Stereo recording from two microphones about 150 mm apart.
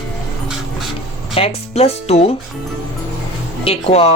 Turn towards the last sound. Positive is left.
turn(degrees=40)  # may be behind; listen again after turning